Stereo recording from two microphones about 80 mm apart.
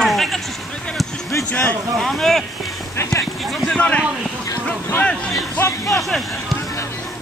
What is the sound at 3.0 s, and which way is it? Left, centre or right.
Speech, left.